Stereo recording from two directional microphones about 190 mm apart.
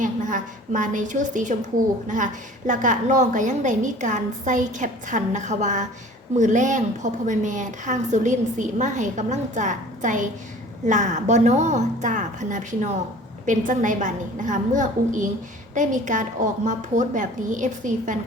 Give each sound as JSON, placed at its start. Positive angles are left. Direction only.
{"t": 0.0, "sound": "a woman's voice", "side_deg": -45}